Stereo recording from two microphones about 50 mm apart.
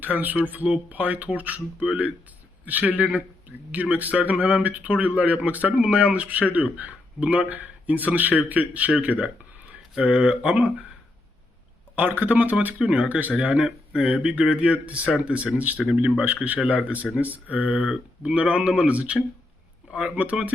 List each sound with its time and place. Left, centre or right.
0.0 s speech: right
5.7 s speech: centre
11.9 s speech: right
15.5 s speech: right